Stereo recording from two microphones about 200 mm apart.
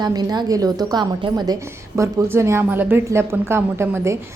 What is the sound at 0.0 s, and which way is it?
A woman's voice, 20° right (ahead or behind).